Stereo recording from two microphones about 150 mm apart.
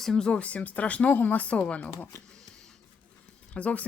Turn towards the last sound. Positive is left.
turn(degrees=10)  # may be behind; listen again after turning